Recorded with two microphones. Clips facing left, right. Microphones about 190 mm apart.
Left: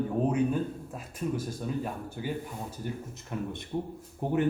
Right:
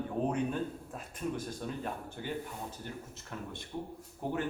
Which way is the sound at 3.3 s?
20° left (ahead or behind).